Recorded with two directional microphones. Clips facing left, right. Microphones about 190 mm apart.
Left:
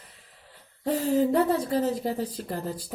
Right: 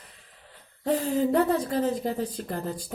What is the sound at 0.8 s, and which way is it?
A woman's voice, 10° left (ahead or behind).